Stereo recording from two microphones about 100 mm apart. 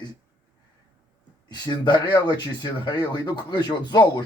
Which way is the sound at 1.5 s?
45° left (ahead or behind).